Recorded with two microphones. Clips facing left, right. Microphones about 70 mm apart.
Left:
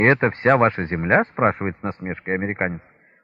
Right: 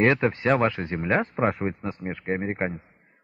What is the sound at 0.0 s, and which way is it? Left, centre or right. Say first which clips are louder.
Speech: left 4 dB; left.